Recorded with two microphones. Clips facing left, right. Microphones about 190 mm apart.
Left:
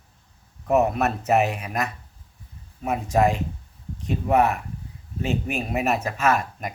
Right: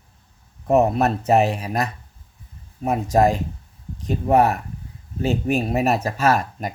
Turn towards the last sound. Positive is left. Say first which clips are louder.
# right 3 dB
turn(degrees=-35)  # may be behind; listen again after turning